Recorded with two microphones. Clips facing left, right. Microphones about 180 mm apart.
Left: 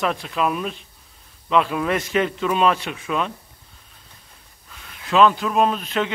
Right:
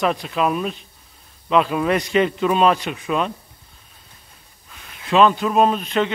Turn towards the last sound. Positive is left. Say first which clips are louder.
# right 3 dB
turn(degrees=5)  # may be behind; listen again after turning